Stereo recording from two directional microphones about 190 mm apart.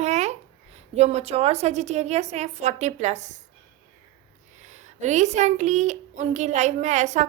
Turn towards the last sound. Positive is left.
turn(degrees=-40)  # may be behind; listen again after turning